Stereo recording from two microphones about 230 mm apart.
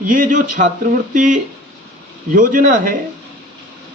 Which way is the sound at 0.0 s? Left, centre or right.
Right.